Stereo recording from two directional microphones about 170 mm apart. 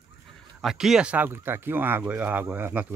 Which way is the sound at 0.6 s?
Centre (ahead or behind).